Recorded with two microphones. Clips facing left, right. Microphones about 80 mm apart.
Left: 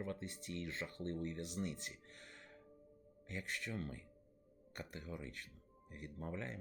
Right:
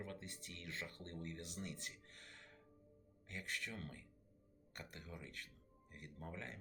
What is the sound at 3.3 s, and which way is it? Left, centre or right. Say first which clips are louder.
Speech: left 2 dB; left.